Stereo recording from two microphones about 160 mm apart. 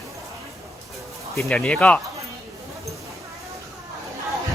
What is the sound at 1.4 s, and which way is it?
Speech, centre (ahead or behind).